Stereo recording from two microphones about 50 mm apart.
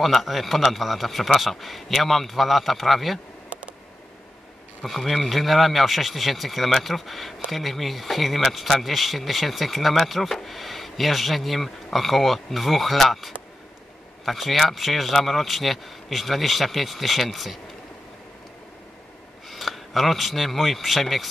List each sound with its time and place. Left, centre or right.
0.0 s speech: centre
4.8 s speech: centre
19.5 s speech: centre